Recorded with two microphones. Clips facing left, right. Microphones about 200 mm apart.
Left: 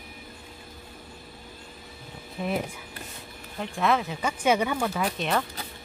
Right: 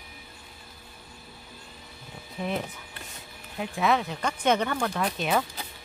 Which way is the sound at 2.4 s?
Centre (ahead or behind).